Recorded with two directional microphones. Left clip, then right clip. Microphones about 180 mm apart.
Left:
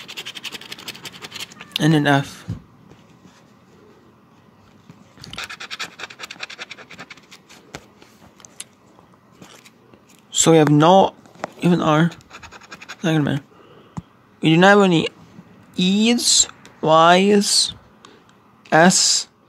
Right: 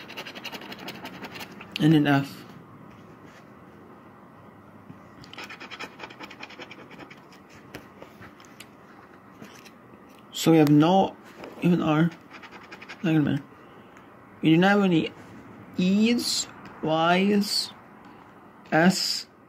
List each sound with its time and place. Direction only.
0.3 s scratch: 30° left (ahead or behind)
5.2 s scratch: 35° left (ahead or behind)
10.3 s a sound: 35° left (ahead or behind)
10.7 s speech: 40° left (ahead or behind)
12.7 s scratch: 30° left (ahead or behind)
14.4 s speech: 40° left (ahead or behind)